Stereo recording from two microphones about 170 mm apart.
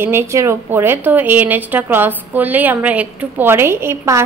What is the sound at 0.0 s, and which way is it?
A woman's voice, 15° right (ahead or behind).